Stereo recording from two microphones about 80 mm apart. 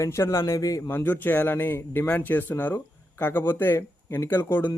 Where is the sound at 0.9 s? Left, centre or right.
Left.